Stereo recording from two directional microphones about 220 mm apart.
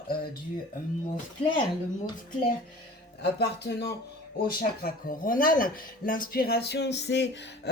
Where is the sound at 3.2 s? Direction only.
50° left (ahead or behind).